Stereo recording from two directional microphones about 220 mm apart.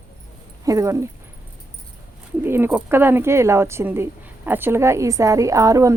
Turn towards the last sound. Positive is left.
turn(degrees=-15)  # may be behind; listen again after turning